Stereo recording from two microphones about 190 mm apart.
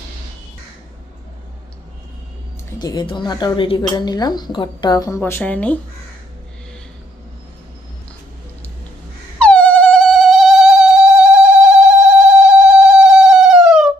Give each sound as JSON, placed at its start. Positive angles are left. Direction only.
{"t": 2.6, "sound": "speech", "side_deg": 20}
{"t": 9.4, "sound": "mosquito", "side_deg": 5}